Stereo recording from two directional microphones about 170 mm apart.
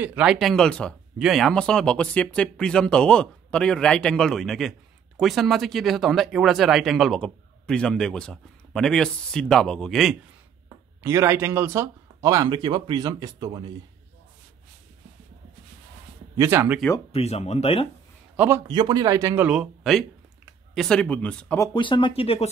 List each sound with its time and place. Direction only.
0.0 s speech: 10° right (ahead or behind)
11.0 s speech: 15° right (ahead or behind)
16.3 s speech: 15° right (ahead or behind)
17.1 s speech: 40° left (ahead or behind)
18.3 s a sound: 10° right (ahead or behind)
18.7 s speech: 25° right (ahead or behind)
19.4 s speech: 5° right (ahead or behind)
21.5 s speech: 30° left (ahead or behind)